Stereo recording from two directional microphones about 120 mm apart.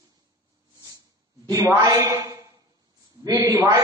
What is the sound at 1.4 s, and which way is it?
A man's voice, 25° right (ahead or behind).